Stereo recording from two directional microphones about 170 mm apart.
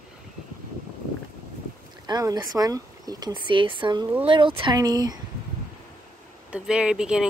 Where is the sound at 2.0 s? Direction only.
25° right (ahead or behind).